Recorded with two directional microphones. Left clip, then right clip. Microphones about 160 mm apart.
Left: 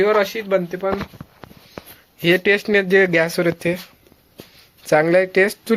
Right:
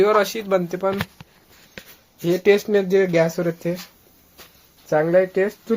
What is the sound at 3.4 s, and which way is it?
Speech, 10° left (ahead or behind).